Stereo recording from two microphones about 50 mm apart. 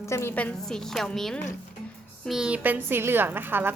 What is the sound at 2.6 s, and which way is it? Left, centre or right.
A woman's voice, right.